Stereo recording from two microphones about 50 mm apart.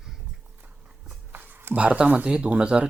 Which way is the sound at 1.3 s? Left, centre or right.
Right.